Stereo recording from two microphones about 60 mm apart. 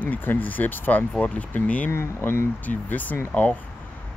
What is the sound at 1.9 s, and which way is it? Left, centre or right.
Speech, left.